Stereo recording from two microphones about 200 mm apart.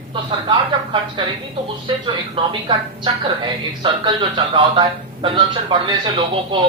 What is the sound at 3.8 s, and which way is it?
Speech, 25° right (ahead or behind).